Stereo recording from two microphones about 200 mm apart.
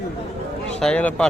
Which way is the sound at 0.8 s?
5° left (ahead or behind).